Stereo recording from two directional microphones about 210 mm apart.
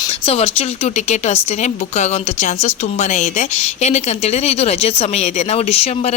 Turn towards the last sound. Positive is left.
turn(degrees=30)  # may be behind; listen again after turning